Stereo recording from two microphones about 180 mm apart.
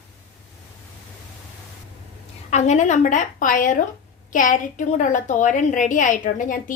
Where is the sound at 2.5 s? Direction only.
40° left (ahead or behind).